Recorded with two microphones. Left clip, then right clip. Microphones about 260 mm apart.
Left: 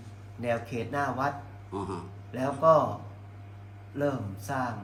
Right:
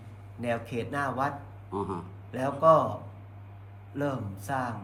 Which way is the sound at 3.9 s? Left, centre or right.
Centre.